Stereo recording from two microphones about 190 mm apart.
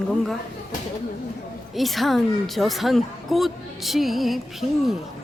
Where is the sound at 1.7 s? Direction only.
Centre (ahead or behind).